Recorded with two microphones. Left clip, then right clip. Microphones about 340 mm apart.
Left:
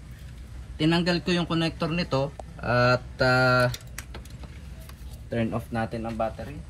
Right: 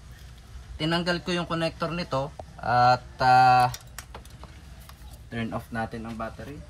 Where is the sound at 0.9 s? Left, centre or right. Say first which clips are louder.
Right 2 dB; right.